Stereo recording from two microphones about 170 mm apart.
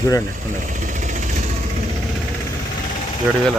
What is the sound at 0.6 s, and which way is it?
Vehicle, 50° right (ahead or behind).